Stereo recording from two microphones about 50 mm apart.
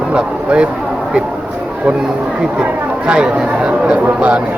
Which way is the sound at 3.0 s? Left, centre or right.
Centre.